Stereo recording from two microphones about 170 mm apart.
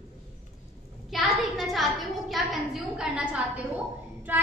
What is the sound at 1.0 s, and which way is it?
A woman's voice, centre (ahead or behind).